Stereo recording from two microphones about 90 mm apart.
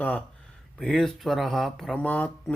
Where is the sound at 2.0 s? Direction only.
15° left (ahead or behind).